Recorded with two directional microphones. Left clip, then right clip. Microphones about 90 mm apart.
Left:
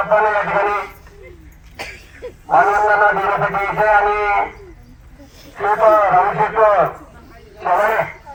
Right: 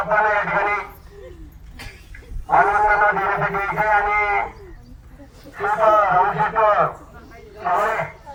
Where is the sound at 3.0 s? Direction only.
20° left (ahead or behind).